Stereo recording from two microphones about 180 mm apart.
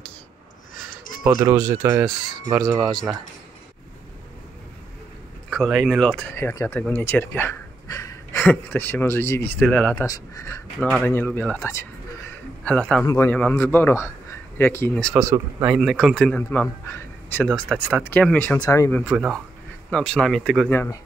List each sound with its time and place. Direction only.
1.2 s speech: 20° right (ahead or behind)
2.8 s speech: centre (ahead or behind)
5.5 s speech: centre (ahead or behind)
6.3 s a man's voice: 15° left (ahead or behind)
10.0 s a man's voice: 20° left (ahead or behind)
13.0 s a man's voice: 15° left (ahead or behind)
15.1 s speech: 15° right (ahead or behind)
15.7 s a man's voice: centre (ahead or behind)
19.0 s speech: 5° right (ahead or behind); by 21.0 s 10° left (ahead or behind)